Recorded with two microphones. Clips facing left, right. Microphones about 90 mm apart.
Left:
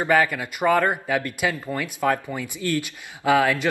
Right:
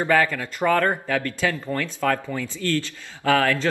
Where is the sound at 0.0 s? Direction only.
15° left (ahead or behind).